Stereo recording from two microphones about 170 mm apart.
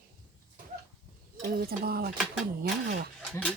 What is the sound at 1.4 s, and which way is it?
Speech, 60° right (ahead or behind).